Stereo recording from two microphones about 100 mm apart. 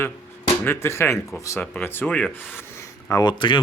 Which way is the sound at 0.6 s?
25° left (ahead or behind).